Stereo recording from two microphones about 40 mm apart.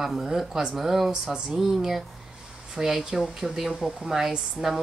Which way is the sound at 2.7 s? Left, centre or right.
Centre.